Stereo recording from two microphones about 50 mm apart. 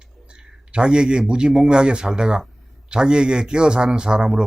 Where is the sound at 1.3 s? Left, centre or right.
Centre.